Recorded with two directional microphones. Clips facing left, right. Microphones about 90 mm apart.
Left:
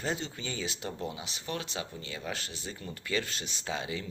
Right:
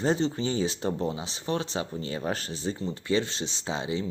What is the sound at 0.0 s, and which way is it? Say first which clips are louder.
Speech: right 9 dB; 35° right (ahead or behind).